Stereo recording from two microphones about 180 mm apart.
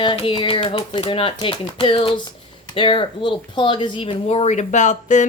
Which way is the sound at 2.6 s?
30° left (ahead or behind).